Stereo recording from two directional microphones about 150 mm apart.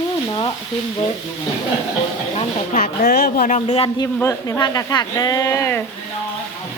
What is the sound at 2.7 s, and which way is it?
Speech, 75° left (ahead or behind).